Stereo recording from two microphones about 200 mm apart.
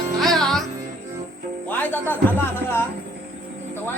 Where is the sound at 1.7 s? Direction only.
10° left (ahead or behind).